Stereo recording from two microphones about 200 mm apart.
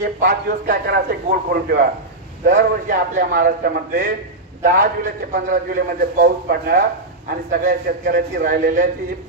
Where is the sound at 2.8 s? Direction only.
45° right (ahead or behind).